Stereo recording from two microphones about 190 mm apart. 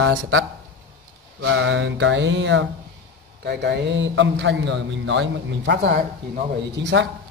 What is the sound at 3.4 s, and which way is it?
A man's voice, 60° right (ahead or behind).